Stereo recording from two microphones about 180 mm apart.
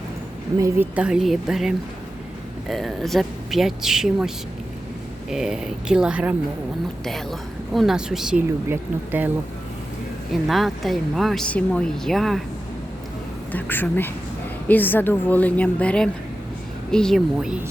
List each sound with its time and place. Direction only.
0.6 s speech: 10° right (ahead or behind)
5.3 s speech: 5° right (ahead or behind)
10.5 s speech: centre (ahead or behind)
13.5 s a woman's voice: 10° left (ahead or behind)